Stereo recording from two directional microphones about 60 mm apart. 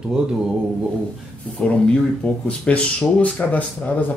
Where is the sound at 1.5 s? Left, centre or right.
Centre.